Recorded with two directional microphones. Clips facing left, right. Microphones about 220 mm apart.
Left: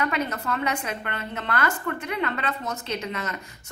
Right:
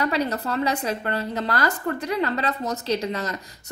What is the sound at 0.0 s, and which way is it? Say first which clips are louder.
A woman's voice: right 3 dB; 35° right (ahead or behind).